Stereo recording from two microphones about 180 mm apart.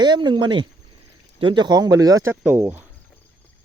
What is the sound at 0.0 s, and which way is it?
Speech, 25° right (ahead or behind).